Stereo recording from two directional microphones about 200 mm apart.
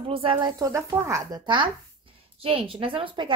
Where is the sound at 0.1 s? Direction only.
25° right (ahead or behind).